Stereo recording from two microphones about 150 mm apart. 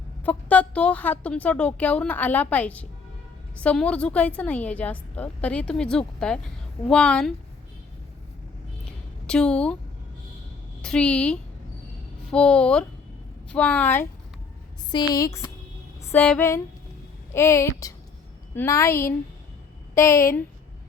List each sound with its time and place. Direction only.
0.3 s a woman's voice: 10° left (ahead or behind)
9.2 s a woman's voice: 5° left (ahead or behind)
10.8 s a woman's voice: 5° left (ahead or behind)
14.8 s a woman's voice: 25° left (ahead or behind)
16.1 s a woman's voice: 10° left (ahead or behind)